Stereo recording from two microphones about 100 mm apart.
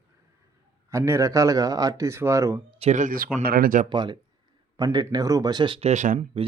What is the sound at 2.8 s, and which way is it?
Speech, 90° right.